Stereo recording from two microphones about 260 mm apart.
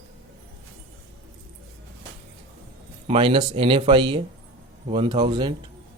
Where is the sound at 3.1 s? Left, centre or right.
Centre.